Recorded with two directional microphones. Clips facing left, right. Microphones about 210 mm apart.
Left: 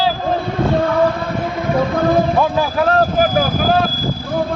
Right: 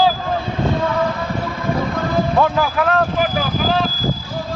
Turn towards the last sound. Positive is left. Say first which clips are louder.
# left 4 dB
turn(degrees=35)  # may be behind; listen again after turning